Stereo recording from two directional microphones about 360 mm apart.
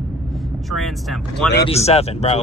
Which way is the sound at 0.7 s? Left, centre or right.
Centre.